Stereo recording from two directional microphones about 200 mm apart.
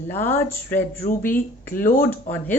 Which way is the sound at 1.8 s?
45° left (ahead or behind).